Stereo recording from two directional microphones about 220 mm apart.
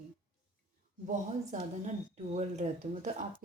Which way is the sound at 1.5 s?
35° right (ahead or behind).